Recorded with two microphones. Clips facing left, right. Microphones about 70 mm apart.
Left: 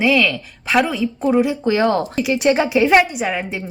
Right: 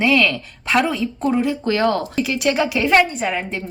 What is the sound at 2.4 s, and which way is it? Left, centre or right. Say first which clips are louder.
Speech: left 4 dB; left.